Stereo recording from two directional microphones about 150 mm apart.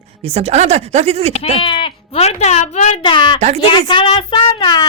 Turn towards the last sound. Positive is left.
turn(degrees=25)  # may be behind; listen again after turning